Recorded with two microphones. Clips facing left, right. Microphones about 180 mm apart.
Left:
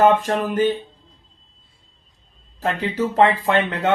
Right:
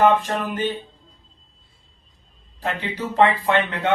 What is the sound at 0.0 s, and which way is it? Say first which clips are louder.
Speech: left 2 dB; 45° left (ahead or behind).